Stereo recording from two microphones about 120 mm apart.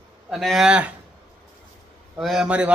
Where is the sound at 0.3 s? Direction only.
Centre (ahead or behind).